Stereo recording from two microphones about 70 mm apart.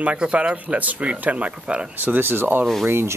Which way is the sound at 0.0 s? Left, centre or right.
Centre.